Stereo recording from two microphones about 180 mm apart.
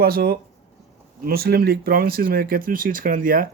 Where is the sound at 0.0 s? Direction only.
60° right (ahead or behind).